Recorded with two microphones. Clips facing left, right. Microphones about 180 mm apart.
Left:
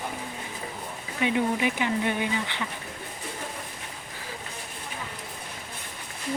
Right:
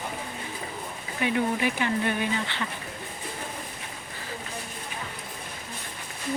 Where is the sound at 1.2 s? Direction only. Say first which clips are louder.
Left 1 dB; 20° left (ahead or behind).